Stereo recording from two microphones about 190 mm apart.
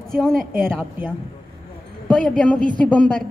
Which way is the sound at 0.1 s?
Centre (ahead or behind).